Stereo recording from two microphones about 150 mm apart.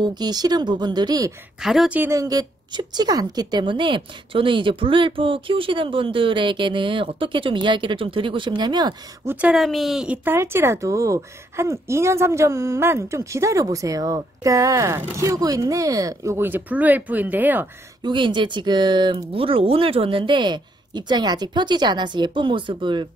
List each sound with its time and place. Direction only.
0.0 s speech: 30° right (ahead or behind)
1.6 s speech: centre (ahead or behind)
2.0 s a woman's voice: 20° right (ahead or behind)
9.2 s speech: 15° right (ahead or behind)
9.5 s speech: centre (ahead or behind)
18.0 s a woman's voice: 30° right (ahead or behind)